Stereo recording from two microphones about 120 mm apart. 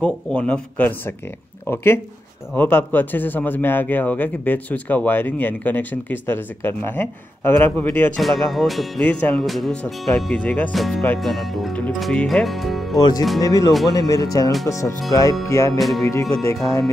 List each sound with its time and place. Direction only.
0.0 s speech: 10° left (ahead or behind)
2.5 s speech: 15° left (ahead or behind)
8.2 s speech: centre (ahead or behind)
10.7 s speech: centre (ahead or behind)
13.4 s speech: 30° left (ahead or behind)